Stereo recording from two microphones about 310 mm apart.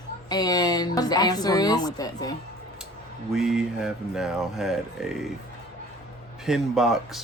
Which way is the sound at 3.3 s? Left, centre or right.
Centre.